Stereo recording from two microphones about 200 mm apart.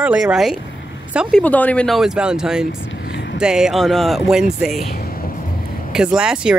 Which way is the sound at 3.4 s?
5° right (ahead or behind).